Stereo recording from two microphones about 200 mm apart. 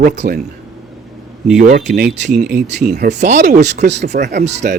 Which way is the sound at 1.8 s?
40° right (ahead or behind).